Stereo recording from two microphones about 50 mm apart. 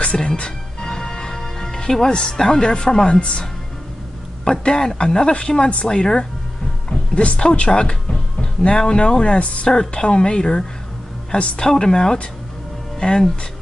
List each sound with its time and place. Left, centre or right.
0.0 s music: left
0.3 s music: centre
2.3 s speech: centre
4.5 s speech: centre